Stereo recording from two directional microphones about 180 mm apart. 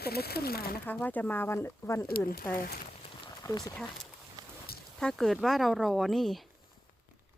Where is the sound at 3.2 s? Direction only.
20° left (ahead or behind).